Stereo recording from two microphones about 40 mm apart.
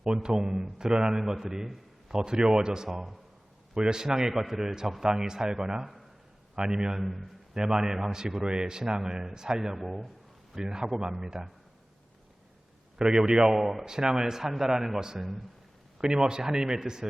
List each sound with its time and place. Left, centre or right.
0.0 s a man's voice: right
2.1 s speech: centre
2.9 s a man's voice: centre
7.0 s a man's voice: centre
7.5 s a man's voice: centre
9.7 s a man's voice: centre
10.5 s a man's voice: centre
13.0 s a man's voice: centre